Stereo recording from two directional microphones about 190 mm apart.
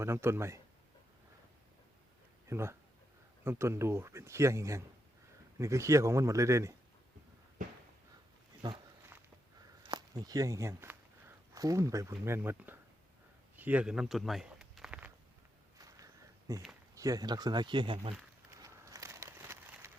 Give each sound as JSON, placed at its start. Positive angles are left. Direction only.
{"t": 0.0, "sound": "speech", "side_deg": -15}
{"t": 2.5, "sound": "speech", "side_deg": -15}
{"t": 7.6, "sound": "a sound", "side_deg": -40}
{"t": 8.6, "sound": "speech", "side_deg": -20}
{"t": 9.8, "sound": "speech", "side_deg": -20}
{"t": 13.6, "sound": "walk", "side_deg": -5}
{"t": 15.8, "sound": "a sound", "side_deg": -20}
{"t": 16.5, "sound": "speech", "side_deg": -15}
{"t": 18.6, "sound": "a sound", "side_deg": -15}